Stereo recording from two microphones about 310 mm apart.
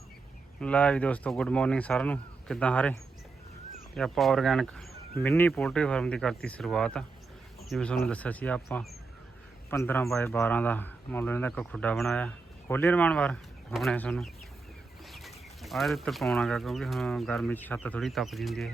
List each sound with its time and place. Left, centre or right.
0.6 s a man's voice: centre